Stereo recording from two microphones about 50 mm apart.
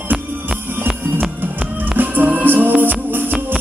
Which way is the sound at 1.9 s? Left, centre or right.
Right.